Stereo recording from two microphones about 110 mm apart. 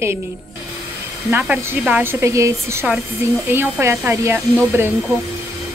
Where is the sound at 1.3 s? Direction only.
15° right (ahead or behind).